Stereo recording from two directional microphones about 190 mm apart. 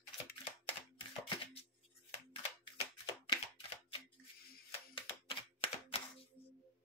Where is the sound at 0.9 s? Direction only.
30° left (ahead or behind).